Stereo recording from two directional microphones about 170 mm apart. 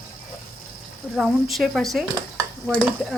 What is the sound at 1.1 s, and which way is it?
Speech, centre (ahead or behind).